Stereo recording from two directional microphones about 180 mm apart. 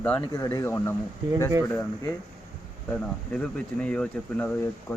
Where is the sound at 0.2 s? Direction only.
20° left (ahead or behind).